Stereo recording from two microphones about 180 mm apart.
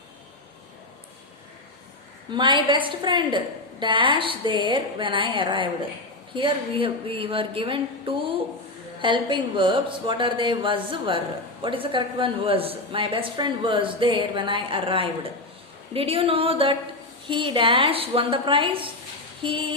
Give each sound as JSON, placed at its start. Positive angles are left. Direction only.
{"t": 2.3, "sound": "a woman's voice", "side_deg": -25}